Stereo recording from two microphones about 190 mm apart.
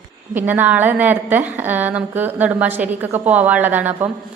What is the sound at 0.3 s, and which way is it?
A woman's voice, 10° right (ahead or behind).